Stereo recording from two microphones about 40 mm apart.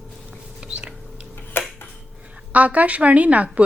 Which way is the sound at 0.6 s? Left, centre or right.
Right.